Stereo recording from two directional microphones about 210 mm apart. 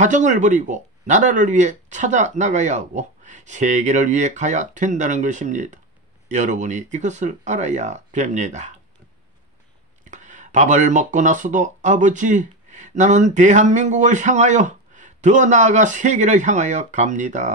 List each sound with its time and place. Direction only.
0.0 s speech: 35° right (ahead or behind)
10.1 s speech: 35° right (ahead or behind)